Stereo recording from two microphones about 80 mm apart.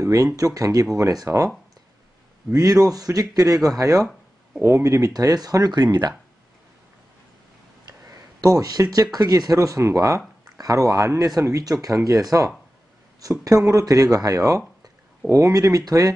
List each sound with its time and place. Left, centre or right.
0.0 s speech: right
2.5 s speech: right
4.6 s speech: right
7.8 s a sound: right
8.9 s speech: right